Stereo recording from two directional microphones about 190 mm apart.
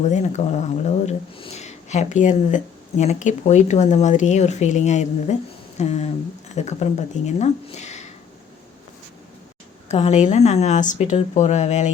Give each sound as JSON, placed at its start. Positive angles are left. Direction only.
{"t": 0.1, "sound": "speech", "side_deg": 40}
{"t": 9.9, "sound": "speech", "side_deg": 35}